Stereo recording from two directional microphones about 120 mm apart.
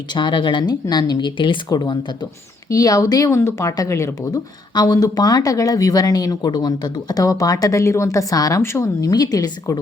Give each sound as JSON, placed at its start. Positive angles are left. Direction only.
{"t": 0.1, "sound": "speech", "side_deg": 40}